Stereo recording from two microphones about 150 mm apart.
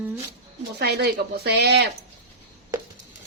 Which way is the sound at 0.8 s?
90° right.